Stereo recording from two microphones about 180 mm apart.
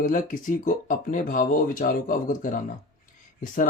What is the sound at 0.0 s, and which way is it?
Speech, 45° left (ahead or behind).